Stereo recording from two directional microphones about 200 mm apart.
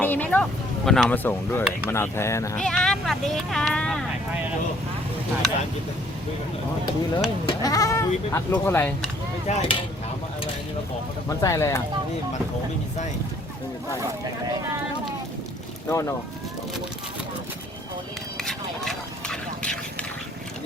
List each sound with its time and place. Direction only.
0.0 s speech: 10° left (ahead or behind)
2.6 s speech: 5° left (ahead or behind)
7.4 s speech: 15° left (ahead or behind)
9.5 s speech: 30° left (ahead or behind)
11.3 s speech: 15° left (ahead or behind)
15.9 s speech: 15° left (ahead or behind)
18.3 s a sound: centre (ahead or behind)